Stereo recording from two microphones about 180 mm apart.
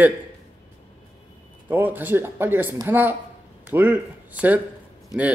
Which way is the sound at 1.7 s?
10° right (ahead or behind).